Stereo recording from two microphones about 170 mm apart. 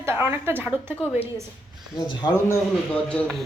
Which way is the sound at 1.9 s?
25° left (ahead or behind).